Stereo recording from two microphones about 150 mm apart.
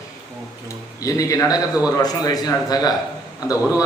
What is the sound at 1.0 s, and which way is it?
A man's voice, 25° left (ahead or behind).